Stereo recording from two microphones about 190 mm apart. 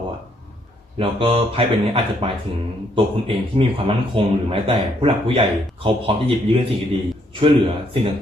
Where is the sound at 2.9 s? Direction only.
30° right (ahead or behind).